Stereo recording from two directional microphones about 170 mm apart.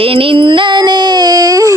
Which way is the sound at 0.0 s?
30° right (ahead or behind).